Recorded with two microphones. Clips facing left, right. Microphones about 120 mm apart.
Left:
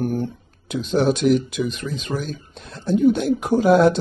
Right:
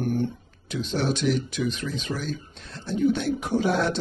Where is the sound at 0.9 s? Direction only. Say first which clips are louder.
Left 8 dB; 45° left (ahead or behind).